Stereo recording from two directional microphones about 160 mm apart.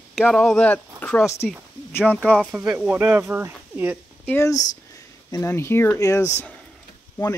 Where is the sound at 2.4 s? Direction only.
10° right (ahead or behind).